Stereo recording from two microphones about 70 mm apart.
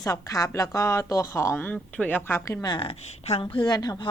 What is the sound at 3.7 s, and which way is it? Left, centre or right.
Speech, left.